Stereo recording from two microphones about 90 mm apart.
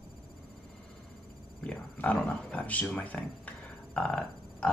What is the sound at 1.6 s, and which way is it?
Speech, 15° left (ahead or behind).